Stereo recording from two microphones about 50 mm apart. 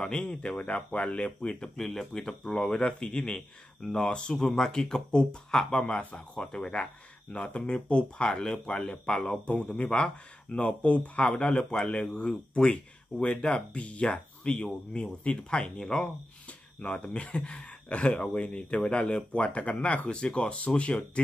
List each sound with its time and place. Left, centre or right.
0.0 s speech: centre
0.6 s speech: left; by 16.1 s centre
16.4 s a sound: left
17.0 s speech: left